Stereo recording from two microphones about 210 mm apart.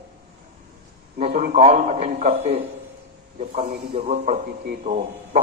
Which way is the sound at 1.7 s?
45° right (ahead or behind).